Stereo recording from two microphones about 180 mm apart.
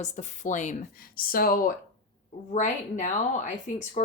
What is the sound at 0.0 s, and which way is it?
A woman's voice, 40° left (ahead or behind).